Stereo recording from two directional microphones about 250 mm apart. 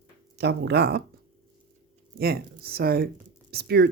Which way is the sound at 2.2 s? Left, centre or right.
Right.